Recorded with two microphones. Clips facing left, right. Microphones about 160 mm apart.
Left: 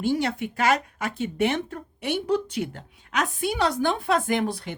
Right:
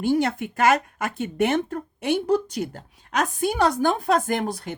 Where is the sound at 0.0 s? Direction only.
50° right (ahead or behind).